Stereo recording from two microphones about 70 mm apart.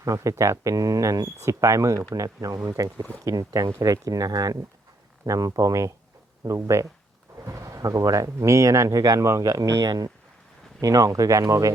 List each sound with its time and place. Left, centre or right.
0.0 s speech: right
1.4 s speech: right
10.8 s speech: right